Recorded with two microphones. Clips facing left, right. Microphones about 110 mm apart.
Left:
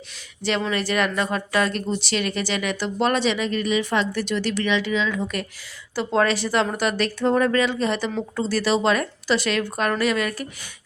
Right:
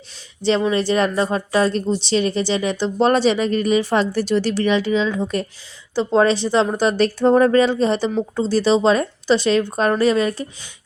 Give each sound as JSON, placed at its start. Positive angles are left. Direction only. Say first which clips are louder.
{"t": 0.6, "sound": "speech", "louder": "right 5 dB", "side_deg": -25}